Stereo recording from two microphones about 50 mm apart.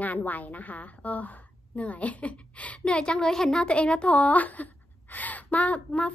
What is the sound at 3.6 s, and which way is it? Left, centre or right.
A woman's voice, left.